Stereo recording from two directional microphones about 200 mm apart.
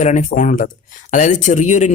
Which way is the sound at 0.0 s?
40° left (ahead or behind).